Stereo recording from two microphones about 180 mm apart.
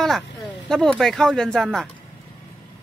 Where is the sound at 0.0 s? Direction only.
Centre (ahead or behind).